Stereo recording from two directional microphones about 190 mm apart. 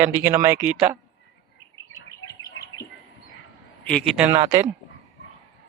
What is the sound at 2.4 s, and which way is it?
Bird, 20° left (ahead or behind).